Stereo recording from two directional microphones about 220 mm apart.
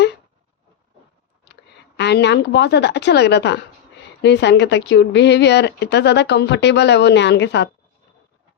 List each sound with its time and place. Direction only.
2.0 s a woman's voice: 50° left (ahead or behind)